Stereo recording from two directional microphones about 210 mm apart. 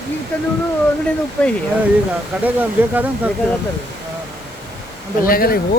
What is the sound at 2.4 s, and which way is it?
Speech, 10° right (ahead or behind).